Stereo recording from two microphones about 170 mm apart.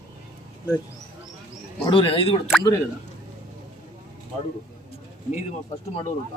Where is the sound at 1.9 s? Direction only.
30° left (ahead or behind).